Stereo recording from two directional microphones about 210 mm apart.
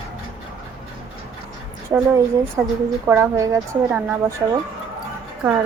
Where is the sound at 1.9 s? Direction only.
10° right (ahead or behind).